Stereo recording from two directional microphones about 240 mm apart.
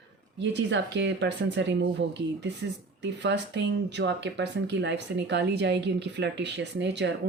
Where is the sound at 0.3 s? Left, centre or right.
Right.